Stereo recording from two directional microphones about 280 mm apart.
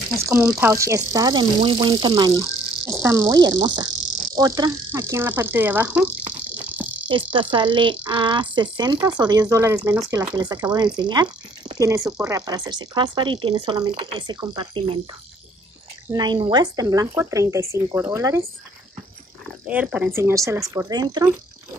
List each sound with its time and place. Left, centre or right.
0.3 s cricket: centre
7.5 s cricket: centre
16.1 s cricket: centre
19.6 s cricket: centre